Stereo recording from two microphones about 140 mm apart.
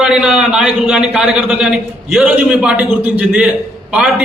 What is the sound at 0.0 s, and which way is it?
A man's voice, 5° right (ahead or behind).